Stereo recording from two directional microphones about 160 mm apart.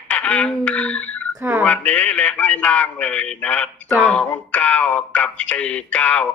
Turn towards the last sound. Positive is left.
turn(degrees=10)  # may be behind; listen again after turning